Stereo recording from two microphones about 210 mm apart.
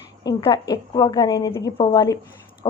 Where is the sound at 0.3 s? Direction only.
20° left (ahead or behind).